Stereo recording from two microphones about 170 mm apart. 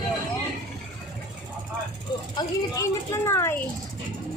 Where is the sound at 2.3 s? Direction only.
20° left (ahead or behind).